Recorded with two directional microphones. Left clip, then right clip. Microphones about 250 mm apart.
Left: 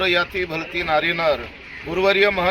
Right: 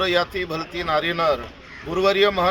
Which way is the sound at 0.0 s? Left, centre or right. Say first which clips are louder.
Left 1 dB; centre.